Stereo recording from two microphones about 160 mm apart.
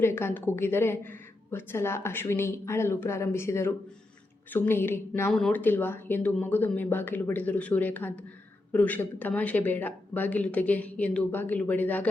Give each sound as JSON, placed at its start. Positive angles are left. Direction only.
{"t": 0.0, "sound": "a woman's voice", "side_deg": 15}